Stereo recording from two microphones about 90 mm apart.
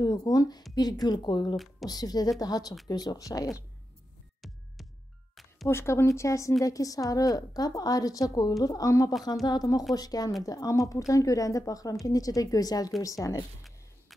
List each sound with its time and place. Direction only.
0.0 s a woman's voice: 45° left (ahead or behind)
1.9 s a woman's voice: 45° left (ahead or behind)
5.3 s music: centre (ahead or behind)
5.7 s a woman's voice: 30° left (ahead or behind)